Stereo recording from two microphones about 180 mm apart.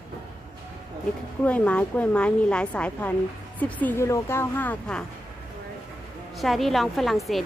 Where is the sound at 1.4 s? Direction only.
10° left (ahead or behind).